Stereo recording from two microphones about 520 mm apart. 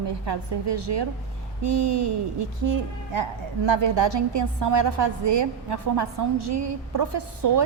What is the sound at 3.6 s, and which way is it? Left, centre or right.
A woman's voice, right.